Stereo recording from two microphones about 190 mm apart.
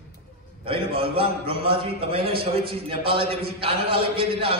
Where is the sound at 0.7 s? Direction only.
30° right (ahead or behind).